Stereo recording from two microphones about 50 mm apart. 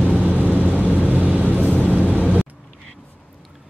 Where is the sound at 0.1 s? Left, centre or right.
Right.